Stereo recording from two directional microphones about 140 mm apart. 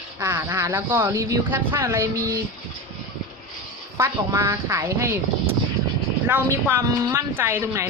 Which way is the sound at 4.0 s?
20° right (ahead or behind).